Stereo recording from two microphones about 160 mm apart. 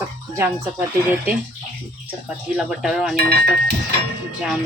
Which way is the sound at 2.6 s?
Centre (ahead or behind).